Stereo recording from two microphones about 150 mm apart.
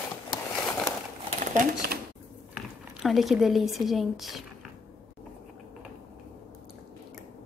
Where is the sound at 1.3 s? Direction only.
55° right (ahead or behind).